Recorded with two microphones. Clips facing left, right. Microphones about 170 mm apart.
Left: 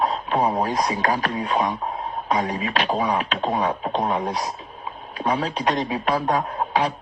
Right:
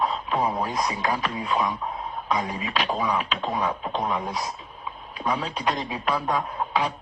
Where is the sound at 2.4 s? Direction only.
75° left (ahead or behind).